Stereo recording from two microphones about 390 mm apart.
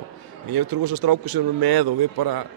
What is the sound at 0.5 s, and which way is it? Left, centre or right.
A man's voice, right.